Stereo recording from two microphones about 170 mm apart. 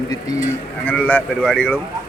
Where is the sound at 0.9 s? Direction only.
10° left (ahead or behind).